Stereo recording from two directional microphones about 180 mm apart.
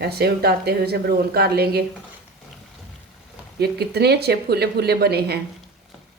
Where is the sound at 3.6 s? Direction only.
65° right (ahead or behind).